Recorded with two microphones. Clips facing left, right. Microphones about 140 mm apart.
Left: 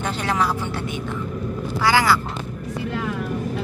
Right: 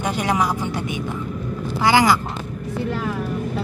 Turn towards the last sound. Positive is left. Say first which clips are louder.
# right 2 dB
turn(degrees=-20)  # may be behind; listen again after turning